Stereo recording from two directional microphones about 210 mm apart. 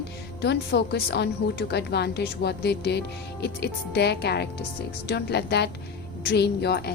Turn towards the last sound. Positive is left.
turn(degrees=50)  # may be behind; listen again after turning